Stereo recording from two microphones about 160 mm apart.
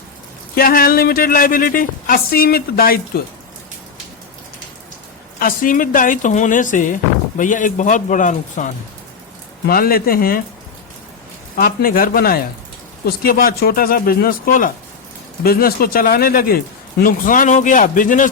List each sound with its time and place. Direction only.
0.5 s a woman's voice: 65° left (ahead or behind)
5.4 s speech: 60° left (ahead or behind)
9.6 s speech: 65° left (ahead or behind)
11.5 s a woman's voice: 65° left (ahead or behind)